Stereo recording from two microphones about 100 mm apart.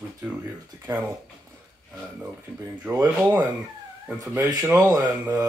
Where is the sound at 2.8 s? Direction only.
20° right (ahead or behind).